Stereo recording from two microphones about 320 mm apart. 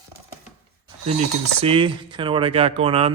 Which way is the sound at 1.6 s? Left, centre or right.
Centre.